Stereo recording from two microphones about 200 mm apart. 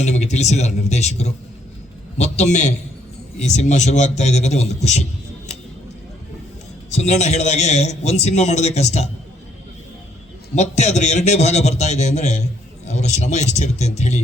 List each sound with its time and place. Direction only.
0.0 s a man's voice: 35° left (ahead or behind)
6.9 s a man's voice: 35° left (ahead or behind)
10.5 s a man's voice: 35° left (ahead or behind)